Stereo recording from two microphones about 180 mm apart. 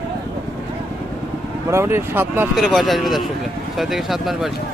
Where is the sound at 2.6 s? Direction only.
Centre (ahead or behind).